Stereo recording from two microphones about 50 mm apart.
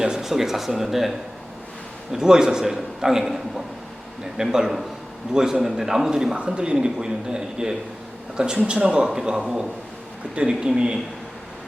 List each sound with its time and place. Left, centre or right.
0.0 s a man's voice: centre
2.1 s a man's voice: centre